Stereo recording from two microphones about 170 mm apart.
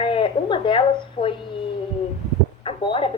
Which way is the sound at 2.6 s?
30° left (ahead or behind).